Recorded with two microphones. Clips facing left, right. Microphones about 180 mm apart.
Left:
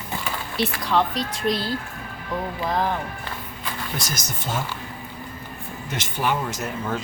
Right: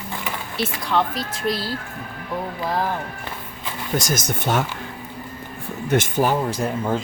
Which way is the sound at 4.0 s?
50° right (ahead or behind).